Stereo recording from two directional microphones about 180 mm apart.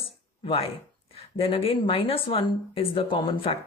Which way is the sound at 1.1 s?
30° left (ahead or behind).